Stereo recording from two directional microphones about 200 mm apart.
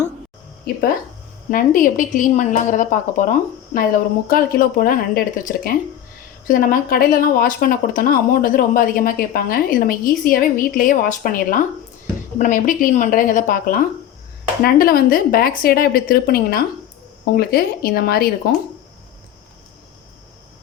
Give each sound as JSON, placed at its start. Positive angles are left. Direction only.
{"t": 0.6, "sound": "a woman's voice", "side_deg": 45}